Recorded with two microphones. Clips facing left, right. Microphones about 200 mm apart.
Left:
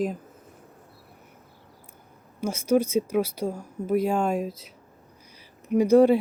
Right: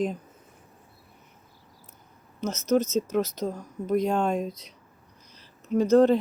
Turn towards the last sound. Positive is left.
turn(degrees=10)  # may be behind; listen again after turning